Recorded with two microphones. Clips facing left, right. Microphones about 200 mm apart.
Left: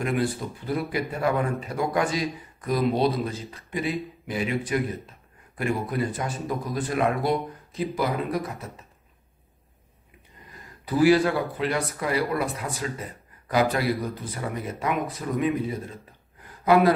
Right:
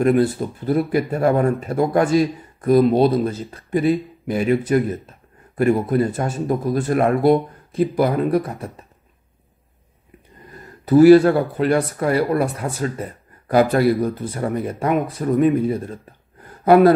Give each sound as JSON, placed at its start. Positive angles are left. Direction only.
{"t": 0.0, "sound": "speech", "side_deg": -45}
{"t": 10.9, "sound": "speech", "side_deg": -50}
{"t": 13.5, "sound": "speech", "side_deg": -55}